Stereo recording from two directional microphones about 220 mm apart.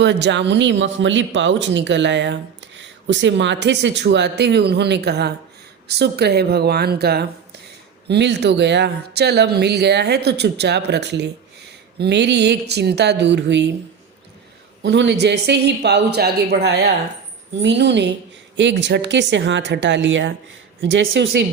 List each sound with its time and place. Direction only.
0.0 s speech: 50° right (ahead or behind)
14.8 s speech: 55° right (ahead or behind)